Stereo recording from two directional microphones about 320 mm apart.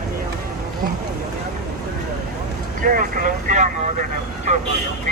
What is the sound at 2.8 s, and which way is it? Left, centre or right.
Speech, right.